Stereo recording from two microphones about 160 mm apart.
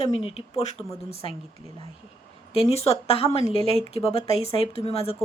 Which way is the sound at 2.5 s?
40° left (ahead or behind).